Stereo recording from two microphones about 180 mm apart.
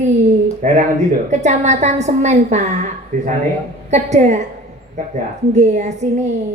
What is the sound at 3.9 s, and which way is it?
Speech, 40° right (ahead or behind).